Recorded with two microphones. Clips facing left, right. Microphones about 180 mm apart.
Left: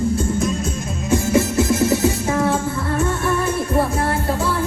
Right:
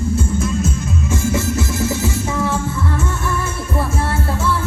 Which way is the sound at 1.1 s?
20° left (ahead or behind).